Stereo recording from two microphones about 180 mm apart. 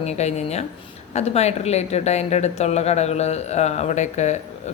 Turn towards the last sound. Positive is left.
turn(degrees=40)  # may be behind; listen again after turning